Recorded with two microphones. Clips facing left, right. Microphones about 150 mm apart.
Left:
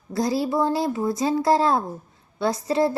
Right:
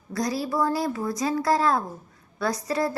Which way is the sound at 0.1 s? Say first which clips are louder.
Left 4 dB; 25° left (ahead or behind).